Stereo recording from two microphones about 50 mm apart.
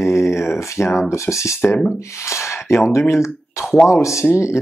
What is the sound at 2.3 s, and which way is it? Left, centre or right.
Speech, left.